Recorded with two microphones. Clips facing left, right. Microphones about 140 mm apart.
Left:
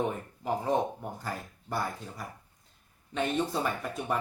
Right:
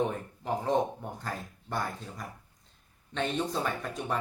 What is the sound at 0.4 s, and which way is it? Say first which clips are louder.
Speech: even; 5° left (ahead or behind).